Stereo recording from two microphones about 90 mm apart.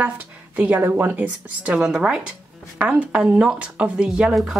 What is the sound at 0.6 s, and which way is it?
A woman's voice, 20° right (ahead or behind).